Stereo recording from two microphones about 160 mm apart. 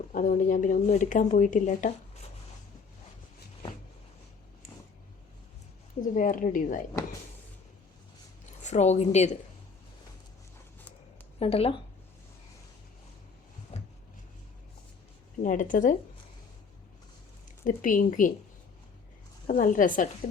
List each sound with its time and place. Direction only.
0.1 s speech: 55° left (ahead or behind)
6.1 s speech: 55° left (ahead or behind)
8.6 s speech: 45° left (ahead or behind)
11.3 s speech: 35° left (ahead or behind)
13.7 s cupboard open or close: 45° left (ahead or behind)
15.4 s speech: 55° left (ahead or behind)
17.6 s speech: 55° left (ahead or behind)
19.5 s speech: 55° left (ahead or behind)